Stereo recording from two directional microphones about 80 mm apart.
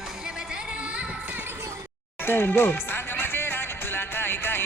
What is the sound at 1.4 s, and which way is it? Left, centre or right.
Music, right.